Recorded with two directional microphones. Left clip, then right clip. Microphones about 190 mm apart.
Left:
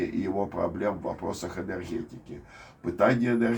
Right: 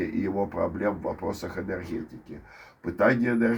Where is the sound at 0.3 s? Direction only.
20° right (ahead or behind).